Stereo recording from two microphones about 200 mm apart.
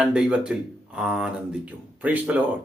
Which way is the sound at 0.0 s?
5° right (ahead or behind).